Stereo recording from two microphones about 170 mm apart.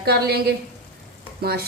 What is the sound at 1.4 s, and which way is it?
Stir, 65° right (ahead or behind).